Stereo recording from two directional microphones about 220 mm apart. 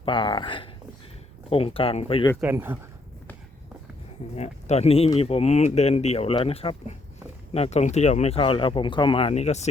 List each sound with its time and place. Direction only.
0.0 s speech: 25° left (ahead or behind)
2.4 s speech: 10° right (ahead or behind)
4.4 s speech: 30° left (ahead or behind)